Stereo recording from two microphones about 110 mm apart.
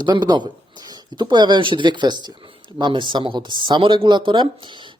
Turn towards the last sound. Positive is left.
turn(degrees=-45)  # may be behind; listen again after turning